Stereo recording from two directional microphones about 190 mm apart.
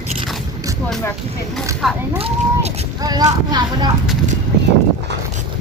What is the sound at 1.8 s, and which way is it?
Speech, centre (ahead or behind).